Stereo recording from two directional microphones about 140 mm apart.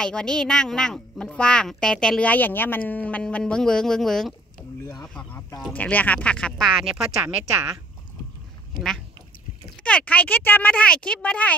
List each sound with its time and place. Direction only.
0.0 s a woman's voice: 5° left (ahead or behind)
6.8 s a woman's voice: 5° right (ahead or behind)
7.2 s speech: 15° right (ahead or behind)
9.8 s speech: 10° left (ahead or behind)